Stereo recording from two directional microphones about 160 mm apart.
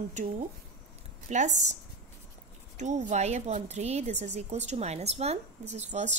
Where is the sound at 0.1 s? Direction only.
50° right (ahead or behind).